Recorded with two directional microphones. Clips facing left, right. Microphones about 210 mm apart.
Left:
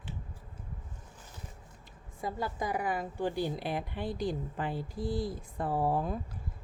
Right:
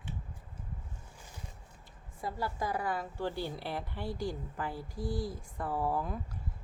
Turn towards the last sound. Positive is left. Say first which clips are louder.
# left 3 dB
turn(degrees=30)  # may be behind; listen again after turning